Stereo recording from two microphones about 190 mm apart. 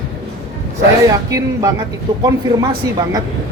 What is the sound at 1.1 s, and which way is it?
Speech, 20° right (ahead or behind).